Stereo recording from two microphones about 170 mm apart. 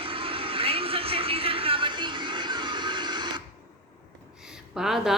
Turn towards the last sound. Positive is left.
turn(degrees=0)  # may be behind; listen again after turning